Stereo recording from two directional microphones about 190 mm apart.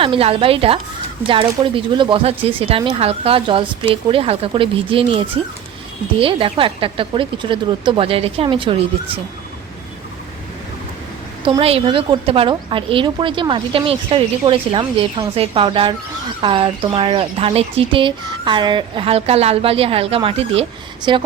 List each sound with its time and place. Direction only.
0.0 s a woman's voice: 30° right (ahead or behind)
11.4 s a woman's voice: 30° right (ahead or behind)